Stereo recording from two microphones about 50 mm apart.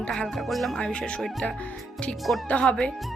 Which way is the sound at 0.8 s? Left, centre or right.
Left.